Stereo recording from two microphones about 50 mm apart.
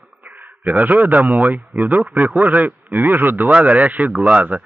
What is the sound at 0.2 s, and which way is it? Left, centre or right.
A man's voice, right.